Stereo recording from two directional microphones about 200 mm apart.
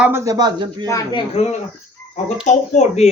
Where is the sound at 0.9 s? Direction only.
15° left (ahead or behind).